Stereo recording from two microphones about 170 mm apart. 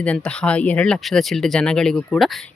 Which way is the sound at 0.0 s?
5° left (ahead or behind).